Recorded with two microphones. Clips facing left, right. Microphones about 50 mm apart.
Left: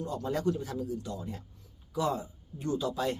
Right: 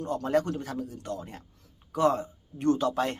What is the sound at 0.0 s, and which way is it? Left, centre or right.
A man's voice, right.